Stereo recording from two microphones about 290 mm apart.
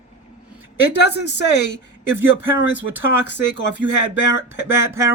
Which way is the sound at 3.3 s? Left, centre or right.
Left.